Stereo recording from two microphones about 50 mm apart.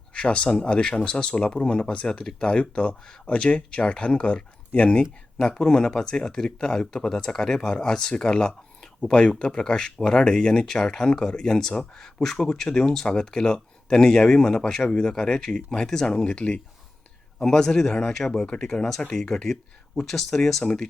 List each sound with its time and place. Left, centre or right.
0.1 s speech: left